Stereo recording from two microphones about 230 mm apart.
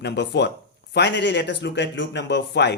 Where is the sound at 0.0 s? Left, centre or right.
Left.